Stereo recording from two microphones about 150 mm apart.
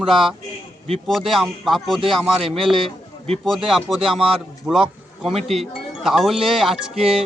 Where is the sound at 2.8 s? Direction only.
40° right (ahead or behind).